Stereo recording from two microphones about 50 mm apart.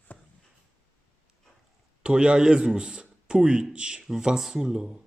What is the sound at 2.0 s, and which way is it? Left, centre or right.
A man's voice, centre.